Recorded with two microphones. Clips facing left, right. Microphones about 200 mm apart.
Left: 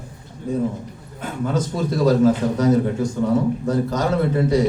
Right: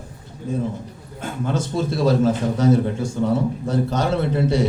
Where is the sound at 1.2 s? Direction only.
30° right (ahead or behind).